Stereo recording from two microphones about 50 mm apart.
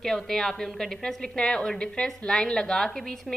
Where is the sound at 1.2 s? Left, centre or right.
Centre.